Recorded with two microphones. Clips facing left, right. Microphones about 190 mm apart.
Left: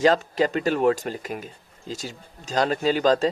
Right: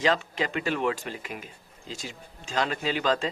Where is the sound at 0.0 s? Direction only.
40° left (ahead or behind).